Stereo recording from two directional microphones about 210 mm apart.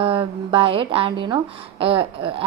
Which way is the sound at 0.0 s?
25° right (ahead or behind).